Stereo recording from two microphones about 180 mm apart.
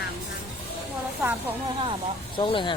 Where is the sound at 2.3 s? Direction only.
25° left (ahead or behind).